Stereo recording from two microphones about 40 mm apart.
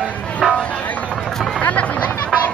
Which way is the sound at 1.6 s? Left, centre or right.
Left.